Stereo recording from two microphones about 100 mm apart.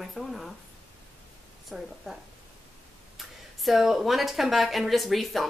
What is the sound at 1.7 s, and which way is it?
Speech, 5° right (ahead or behind).